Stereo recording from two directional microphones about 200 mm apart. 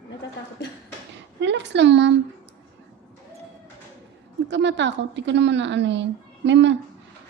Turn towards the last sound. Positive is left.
turn(degrees=-65)  # may be behind; listen again after turning